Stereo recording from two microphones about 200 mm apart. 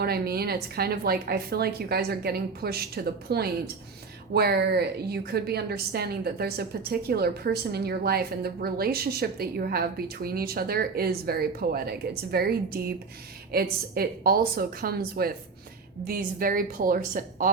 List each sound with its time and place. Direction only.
0.0 s a woman's voice: 50° right (ahead or behind)